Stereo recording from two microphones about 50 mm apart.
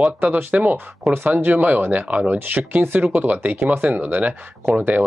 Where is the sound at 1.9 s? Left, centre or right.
Right.